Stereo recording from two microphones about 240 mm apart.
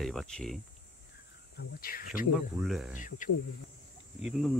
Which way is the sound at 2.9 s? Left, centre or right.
Left.